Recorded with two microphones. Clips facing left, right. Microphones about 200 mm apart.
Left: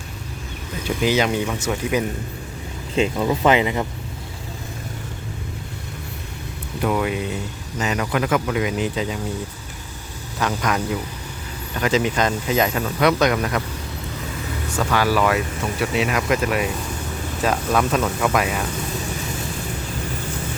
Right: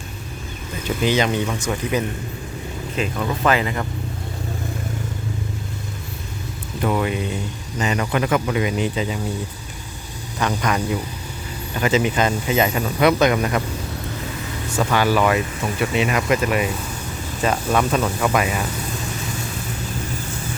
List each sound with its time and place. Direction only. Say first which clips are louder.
0.9 s speech: even; 10° left (ahead or behind)
2.9 s speech: left 5 dB; 25° left (ahead or behind)
6.8 s speech: even; centre (ahead or behind)
10.4 s speech: right 1 dB; 5° left (ahead or behind)
11.8 s speech: right 1 dB; 5° right (ahead or behind)
14.8 s speech: right 1 dB; centre (ahead or behind)